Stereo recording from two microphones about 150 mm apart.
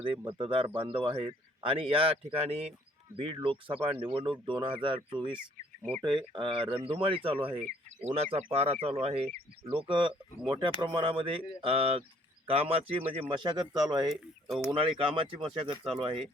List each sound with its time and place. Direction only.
0.3 s speech: 35° right (ahead or behind)
13.3 s speech: 30° right (ahead or behind)